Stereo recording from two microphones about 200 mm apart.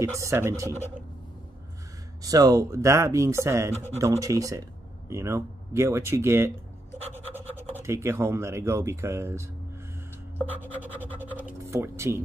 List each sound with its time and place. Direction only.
0.0 s speech: 15° right (ahead or behind)
2.2 s speech: 20° right (ahead or behind)
7.0 s scratch: 30° right (ahead or behind)
7.3 s speech: 10° right (ahead or behind)
10.5 s scratch: 10° right (ahead or behind)